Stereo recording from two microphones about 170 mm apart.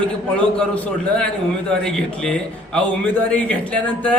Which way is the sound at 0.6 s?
5° left (ahead or behind).